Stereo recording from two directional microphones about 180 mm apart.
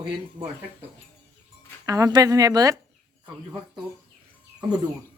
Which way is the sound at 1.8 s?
20° right (ahead or behind).